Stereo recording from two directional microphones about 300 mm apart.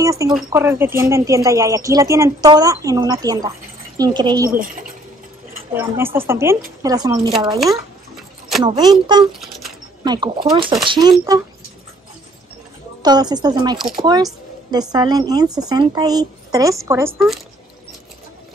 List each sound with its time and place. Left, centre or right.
0.0 s speech: centre
4.5 s speech: right
5.8 s speech: centre
8.6 s speech: centre
13.0 s speech: centre